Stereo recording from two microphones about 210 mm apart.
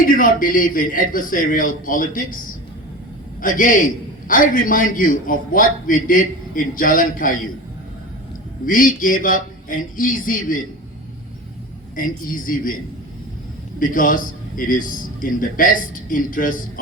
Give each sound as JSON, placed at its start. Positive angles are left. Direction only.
{"t": 0.0, "sound": "a man's voice", "side_deg": 40}
{"t": 3.4, "sound": "a man's voice", "side_deg": 40}
{"t": 8.6, "sound": "a man's voice", "side_deg": 40}
{"t": 11.9, "sound": "a man's voice", "side_deg": 40}
{"t": 13.7, "sound": "a man's voice", "side_deg": 40}